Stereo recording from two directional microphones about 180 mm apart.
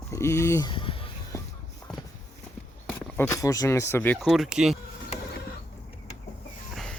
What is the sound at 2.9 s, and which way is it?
Speech, 10° left (ahead or behind).